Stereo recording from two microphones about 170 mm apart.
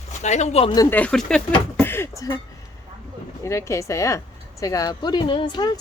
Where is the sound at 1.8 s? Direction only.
15° left (ahead or behind).